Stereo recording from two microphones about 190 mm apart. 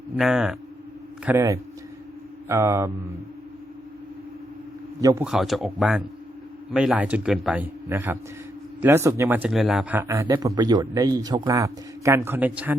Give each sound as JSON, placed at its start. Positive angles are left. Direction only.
{"t": 0.2, "sound": "a man's voice", "side_deg": 0}
{"t": 4.9, "sound": "a man's voice", "side_deg": -20}
{"t": 5.2, "sound": "a man's voice", "side_deg": 0}